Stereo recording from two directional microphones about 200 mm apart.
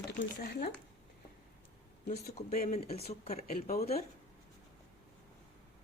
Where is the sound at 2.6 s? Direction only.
30° left (ahead or behind).